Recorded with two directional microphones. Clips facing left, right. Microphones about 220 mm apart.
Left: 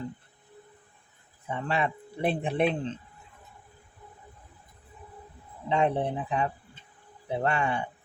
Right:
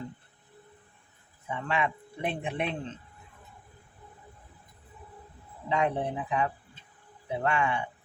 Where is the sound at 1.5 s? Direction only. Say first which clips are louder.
Left 1 dB; 35° left (ahead or behind).